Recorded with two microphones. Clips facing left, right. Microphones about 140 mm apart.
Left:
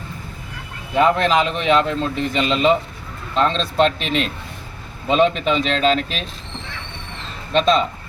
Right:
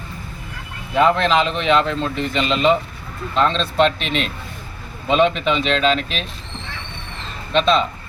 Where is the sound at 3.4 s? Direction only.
40° left (ahead or behind).